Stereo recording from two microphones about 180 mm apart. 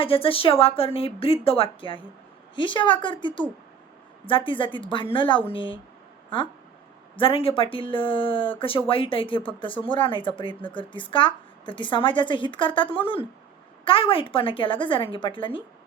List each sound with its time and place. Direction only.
0.0 s a woman's voice: 30° left (ahead or behind)
7.2 s a woman's voice: 30° left (ahead or behind)